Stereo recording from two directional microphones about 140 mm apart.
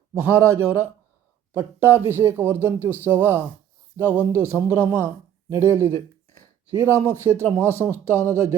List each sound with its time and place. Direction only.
0.1 s a man's voice: 15° right (ahead or behind)
6.7 s speech: 20° right (ahead or behind)